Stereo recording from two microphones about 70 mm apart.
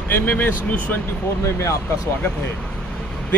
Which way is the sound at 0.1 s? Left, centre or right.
Left.